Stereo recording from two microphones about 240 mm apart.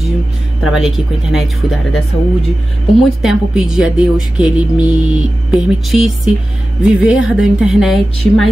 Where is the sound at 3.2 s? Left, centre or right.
Centre.